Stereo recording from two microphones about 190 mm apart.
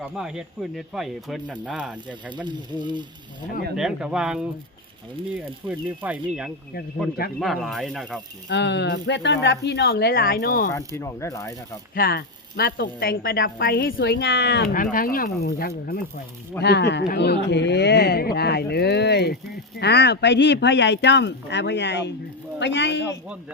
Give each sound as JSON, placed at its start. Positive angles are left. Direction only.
{"t": 0.0, "sound": "speech", "side_deg": -5}
{"t": 2.3, "sound": "frying", "side_deg": -25}
{"t": 3.8, "sound": "speech", "side_deg": -5}
{"t": 8.4, "sound": "a woman's voice", "side_deg": 65}
{"t": 10.7, "sound": "speech", "side_deg": 15}
{"t": 11.9, "sound": "a woman's voice", "side_deg": 50}